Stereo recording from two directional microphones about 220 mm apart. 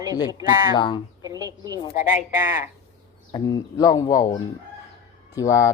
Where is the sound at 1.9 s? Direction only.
35° left (ahead or behind).